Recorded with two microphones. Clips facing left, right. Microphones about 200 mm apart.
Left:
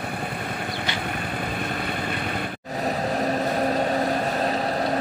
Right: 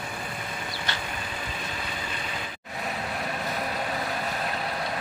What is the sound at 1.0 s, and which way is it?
Vehicle, 55° left (ahead or behind).